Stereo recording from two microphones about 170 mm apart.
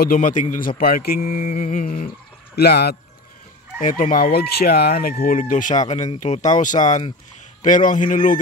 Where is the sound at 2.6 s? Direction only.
70° left (ahead or behind).